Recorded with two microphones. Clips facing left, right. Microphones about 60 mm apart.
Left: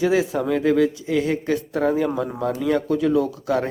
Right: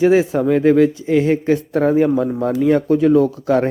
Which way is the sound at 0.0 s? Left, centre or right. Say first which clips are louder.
Right 6 dB; right.